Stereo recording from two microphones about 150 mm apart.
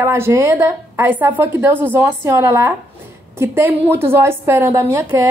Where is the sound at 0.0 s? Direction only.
15° right (ahead or behind).